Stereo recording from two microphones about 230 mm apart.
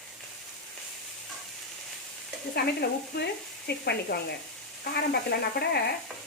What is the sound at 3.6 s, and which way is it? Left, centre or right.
Speech, left.